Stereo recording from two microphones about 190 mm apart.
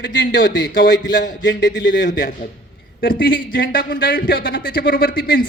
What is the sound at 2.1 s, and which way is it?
A man's voice, 45° left (ahead or behind).